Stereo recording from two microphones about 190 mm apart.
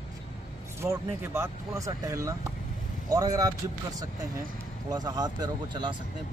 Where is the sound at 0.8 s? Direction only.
15° right (ahead or behind).